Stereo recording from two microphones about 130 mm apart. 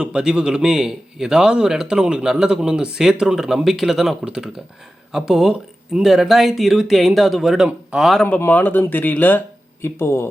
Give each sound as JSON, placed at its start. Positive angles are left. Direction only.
{"t": 0.0, "sound": "a man's voice", "side_deg": -5}
{"t": 8.3, "sound": "speech", "side_deg": 15}